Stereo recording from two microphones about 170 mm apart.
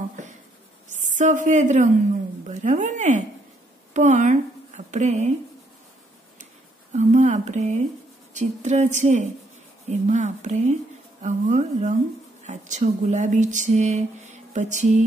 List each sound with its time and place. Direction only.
0.8 s a woman's voice: 45° right (ahead or behind)
6.9 s speech: 45° right (ahead or behind)